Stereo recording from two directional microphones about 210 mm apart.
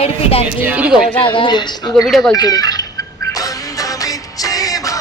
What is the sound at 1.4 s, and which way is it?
Speech, 20° left (ahead or behind).